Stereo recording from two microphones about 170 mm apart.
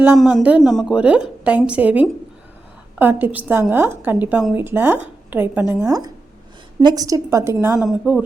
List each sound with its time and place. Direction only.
0.2 s a woman's voice: centre (ahead or behind)
7.8 s speech: 5° right (ahead or behind)